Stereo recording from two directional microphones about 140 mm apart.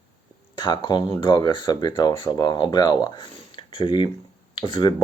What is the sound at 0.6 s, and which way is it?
Speech, 30° left (ahead or behind).